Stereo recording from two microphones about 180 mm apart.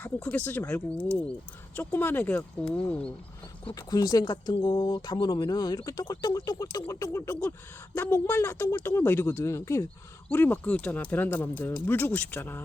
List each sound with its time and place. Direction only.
0.0 s speech: 10° left (ahead or behind)
3.8 s speech: 20° left (ahead or behind)